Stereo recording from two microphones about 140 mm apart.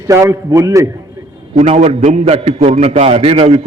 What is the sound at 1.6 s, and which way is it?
A man's voice, 50° right (ahead or behind).